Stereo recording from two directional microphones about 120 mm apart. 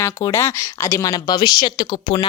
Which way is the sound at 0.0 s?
25° left (ahead or behind).